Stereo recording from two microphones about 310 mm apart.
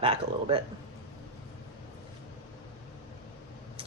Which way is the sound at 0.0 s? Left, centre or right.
Centre.